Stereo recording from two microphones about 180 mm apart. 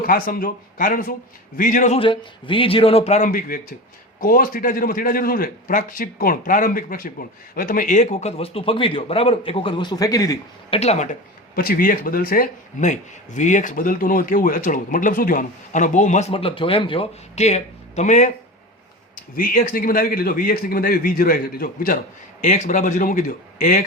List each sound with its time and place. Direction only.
0.0 s a man's voice: 55° left (ahead or behind); by 10.3 s 20° left (ahead or behind)
10.7 s speech: 35° left (ahead or behind)
19.4 s speech: 50° left (ahead or behind)
22.4 s speech: 40° left (ahead or behind)